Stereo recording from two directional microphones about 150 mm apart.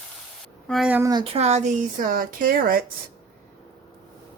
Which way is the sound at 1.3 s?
45° right (ahead or behind).